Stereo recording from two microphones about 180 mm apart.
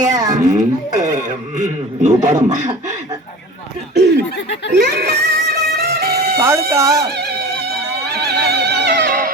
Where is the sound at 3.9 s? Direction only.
65° right (ahead or behind).